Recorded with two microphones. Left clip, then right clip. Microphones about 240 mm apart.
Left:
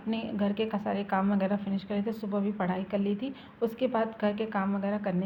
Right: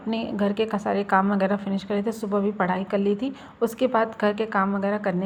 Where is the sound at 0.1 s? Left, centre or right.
Right.